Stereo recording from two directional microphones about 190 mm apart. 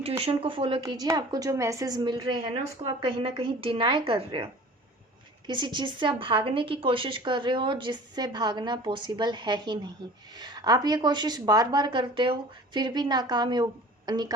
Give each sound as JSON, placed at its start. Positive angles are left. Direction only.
{"t": 0.2, "sound": "a woman's voice", "side_deg": -30}
{"t": 5.5, "sound": "a woman's voice", "side_deg": -25}